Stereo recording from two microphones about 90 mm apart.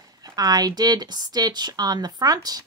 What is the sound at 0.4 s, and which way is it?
Speech, 45° right (ahead or behind).